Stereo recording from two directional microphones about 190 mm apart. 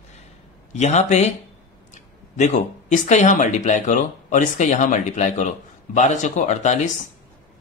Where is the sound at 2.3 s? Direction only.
35° left (ahead or behind).